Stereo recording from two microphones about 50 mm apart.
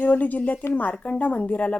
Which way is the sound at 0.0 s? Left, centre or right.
Left.